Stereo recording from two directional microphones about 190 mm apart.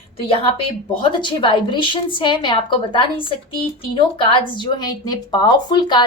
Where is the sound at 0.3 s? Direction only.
30° left (ahead or behind).